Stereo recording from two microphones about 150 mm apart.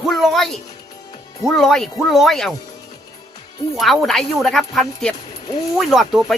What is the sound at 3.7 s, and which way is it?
Speech, centre (ahead or behind).